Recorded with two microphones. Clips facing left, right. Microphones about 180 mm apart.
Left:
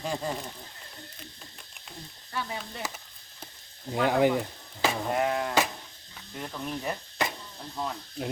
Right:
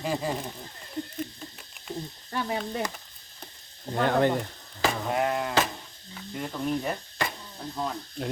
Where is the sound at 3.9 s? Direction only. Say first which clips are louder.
Even; 10° left (ahead or behind).